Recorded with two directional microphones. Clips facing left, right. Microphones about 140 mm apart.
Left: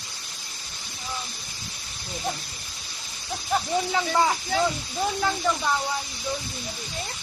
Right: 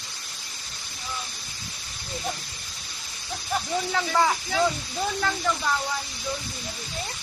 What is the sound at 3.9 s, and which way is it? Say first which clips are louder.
Speech: right 1 dB; 10° left (ahead or behind).